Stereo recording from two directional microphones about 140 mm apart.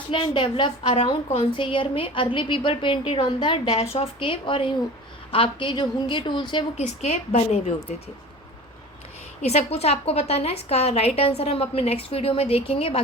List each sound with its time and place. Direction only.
0.1 s a woman's voice: 35° left (ahead or behind)
6.7 s a woman's voice: 50° left (ahead or behind)
9.4 s a woman's voice: 50° left (ahead or behind)